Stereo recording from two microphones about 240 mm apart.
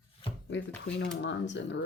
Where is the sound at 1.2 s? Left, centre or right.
Left.